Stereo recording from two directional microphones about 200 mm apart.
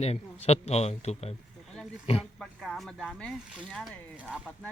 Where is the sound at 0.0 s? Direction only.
30° left (ahead or behind).